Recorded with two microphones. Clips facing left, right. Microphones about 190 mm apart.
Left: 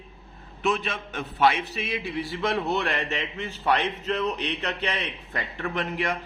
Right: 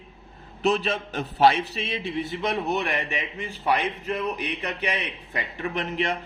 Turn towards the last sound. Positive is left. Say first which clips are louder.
# right 1 dB
turn(degrees=-20)  # may be behind; listen again after turning